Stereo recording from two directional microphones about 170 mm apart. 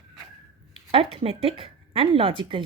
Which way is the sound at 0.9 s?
35° right (ahead or behind).